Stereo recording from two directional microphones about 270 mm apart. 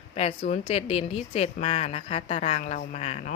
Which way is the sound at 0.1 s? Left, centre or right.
Left.